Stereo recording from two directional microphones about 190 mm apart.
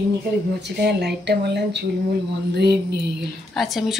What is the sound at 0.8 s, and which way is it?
Speech, 60° right (ahead or behind).